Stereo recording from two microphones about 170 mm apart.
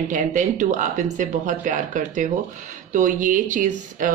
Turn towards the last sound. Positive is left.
turn(degrees=-50)  # may be behind; listen again after turning